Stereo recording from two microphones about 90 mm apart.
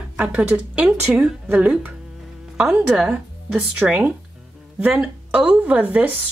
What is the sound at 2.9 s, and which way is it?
Speech, 5° right (ahead or behind).